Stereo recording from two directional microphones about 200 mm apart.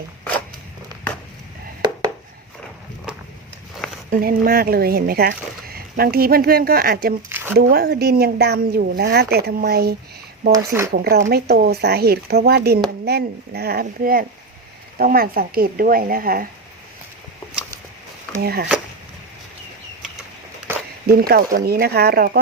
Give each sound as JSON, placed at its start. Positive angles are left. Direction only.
{"t": 1.8, "sound": "a sound", "side_deg": -20}
{"t": 4.1, "sound": "speech", "side_deg": -45}
{"t": 7.3, "sound": "a sound", "side_deg": -10}
{"t": 7.7, "sound": "speech", "side_deg": -55}
{"t": 10.5, "sound": "speech", "side_deg": -15}
{"t": 10.9, "sound": "speech", "side_deg": -50}
{"t": 18.4, "sound": "speech", "side_deg": -50}
{"t": 21.1, "sound": "speech", "side_deg": -50}